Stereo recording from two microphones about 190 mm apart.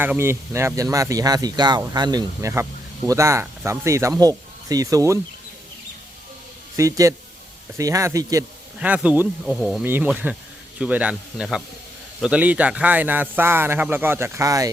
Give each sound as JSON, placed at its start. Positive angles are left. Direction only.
{"t": 0.0, "sound": "speech", "side_deg": -10}
{"t": 6.7, "sound": "speech", "side_deg": -15}
{"t": 8.8, "sound": "speech", "side_deg": -5}
{"t": 9.8, "sound": "speech", "side_deg": -10}